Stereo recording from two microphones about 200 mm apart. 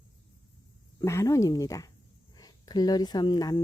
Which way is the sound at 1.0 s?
15° left (ahead or behind).